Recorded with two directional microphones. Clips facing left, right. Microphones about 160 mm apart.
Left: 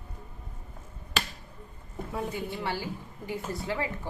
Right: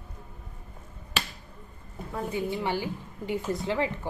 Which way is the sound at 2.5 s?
20° right (ahead or behind).